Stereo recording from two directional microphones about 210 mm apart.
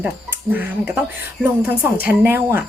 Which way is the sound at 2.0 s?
5° right (ahead or behind).